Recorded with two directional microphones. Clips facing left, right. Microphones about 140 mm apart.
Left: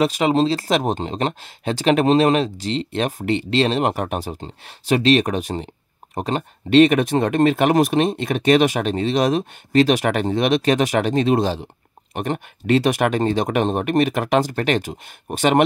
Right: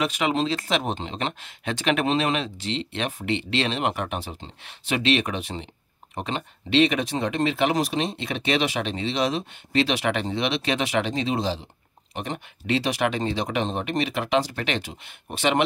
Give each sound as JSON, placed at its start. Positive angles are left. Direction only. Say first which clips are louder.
{"t": 0.0, "sound": "speech", "louder": "left 7 dB", "side_deg": 35}